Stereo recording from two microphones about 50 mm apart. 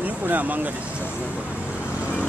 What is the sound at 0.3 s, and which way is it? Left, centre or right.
Speech, right.